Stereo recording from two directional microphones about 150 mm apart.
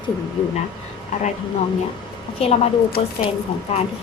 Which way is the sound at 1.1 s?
55° left (ahead or behind).